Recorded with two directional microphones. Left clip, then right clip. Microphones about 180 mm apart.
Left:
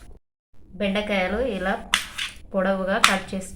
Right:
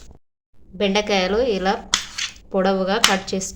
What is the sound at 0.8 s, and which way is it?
A woman's voice, 85° right.